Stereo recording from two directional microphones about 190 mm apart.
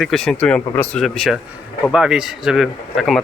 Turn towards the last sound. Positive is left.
turn(degrees=0)  # may be behind; listen again after turning